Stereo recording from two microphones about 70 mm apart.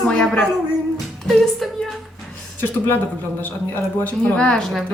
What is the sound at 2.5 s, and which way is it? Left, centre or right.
Speech, left.